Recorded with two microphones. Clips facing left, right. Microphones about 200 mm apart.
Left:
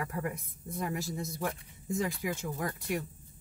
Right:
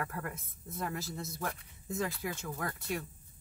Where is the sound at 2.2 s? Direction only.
10° left (ahead or behind).